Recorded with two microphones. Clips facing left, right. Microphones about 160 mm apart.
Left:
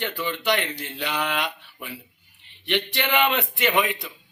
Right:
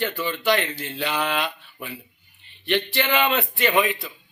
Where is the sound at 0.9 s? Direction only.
15° right (ahead or behind).